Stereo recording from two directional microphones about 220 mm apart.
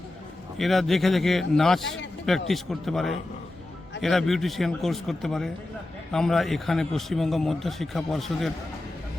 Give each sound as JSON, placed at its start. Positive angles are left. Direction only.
{"t": 0.5, "sound": "a man's voice", "side_deg": 0}